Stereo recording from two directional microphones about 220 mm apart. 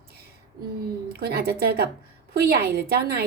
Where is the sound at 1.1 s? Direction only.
45° right (ahead or behind).